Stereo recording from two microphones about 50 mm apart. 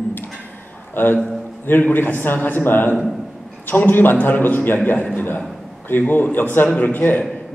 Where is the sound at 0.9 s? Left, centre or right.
Left.